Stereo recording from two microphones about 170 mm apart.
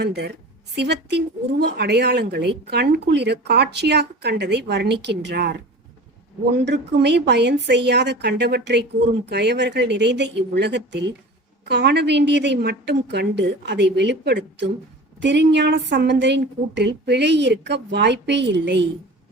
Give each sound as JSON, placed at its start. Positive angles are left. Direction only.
{"t": 0.0, "sound": "speech", "side_deg": -75}
{"t": 6.7, "sound": "a woman's voice", "side_deg": -90}